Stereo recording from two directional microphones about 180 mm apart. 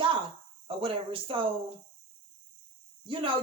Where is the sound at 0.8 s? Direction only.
30° right (ahead or behind).